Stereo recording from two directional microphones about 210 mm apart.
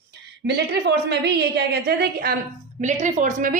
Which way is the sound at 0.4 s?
50° right (ahead or behind).